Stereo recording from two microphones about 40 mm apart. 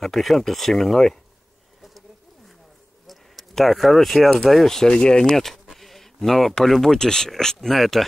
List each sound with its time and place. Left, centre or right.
0.0 s speech: centre
1.8 s bird: centre
3.1 s a sound: centre
4.4 s speech: centre; by 5.3 s left
5.3 s a sound: centre
6.6 s speech: centre